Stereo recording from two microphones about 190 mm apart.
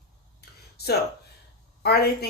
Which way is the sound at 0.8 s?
55° left (ahead or behind).